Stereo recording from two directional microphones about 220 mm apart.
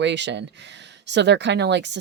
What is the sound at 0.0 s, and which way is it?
Speech, 50° right (ahead or behind).